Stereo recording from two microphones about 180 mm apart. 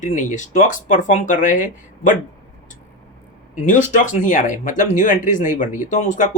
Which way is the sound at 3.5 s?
45° left (ahead or behind).